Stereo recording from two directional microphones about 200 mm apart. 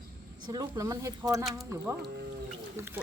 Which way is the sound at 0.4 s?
20° right (ahead or behind).